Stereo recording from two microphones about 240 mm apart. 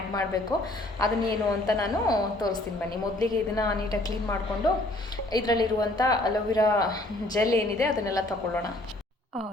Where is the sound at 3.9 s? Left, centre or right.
Centre.